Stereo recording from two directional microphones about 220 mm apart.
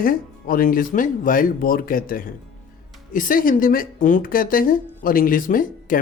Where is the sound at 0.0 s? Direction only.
40° left (ahead or behind).